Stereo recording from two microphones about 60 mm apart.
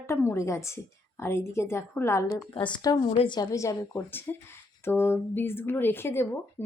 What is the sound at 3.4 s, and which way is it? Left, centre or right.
Speech, left.